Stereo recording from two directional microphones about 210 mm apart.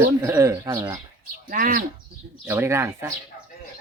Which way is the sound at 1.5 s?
40° right (ahead or behind).